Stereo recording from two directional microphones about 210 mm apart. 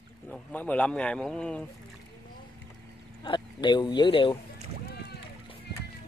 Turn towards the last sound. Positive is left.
turn(degrees=25)  # may be behind; listen again after turning